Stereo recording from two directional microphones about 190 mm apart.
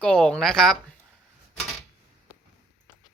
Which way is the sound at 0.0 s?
5° left (ahead or behind).